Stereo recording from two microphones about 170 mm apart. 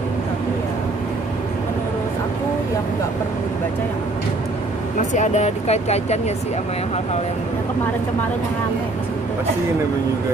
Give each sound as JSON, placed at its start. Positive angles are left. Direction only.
{"t": 5.1, "sound": "speech", "side_deg": 45}